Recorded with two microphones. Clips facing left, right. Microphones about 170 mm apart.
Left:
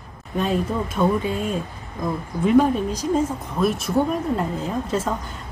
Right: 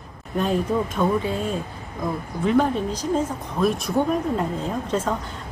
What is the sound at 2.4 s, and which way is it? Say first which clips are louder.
A woman's voice: left 3 dB; 10° left (ahead or behind).